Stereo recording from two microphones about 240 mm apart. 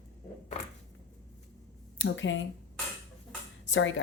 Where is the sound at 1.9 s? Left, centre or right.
Left.